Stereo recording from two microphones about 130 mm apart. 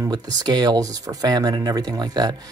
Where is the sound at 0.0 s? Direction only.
30° right (ahead or behind).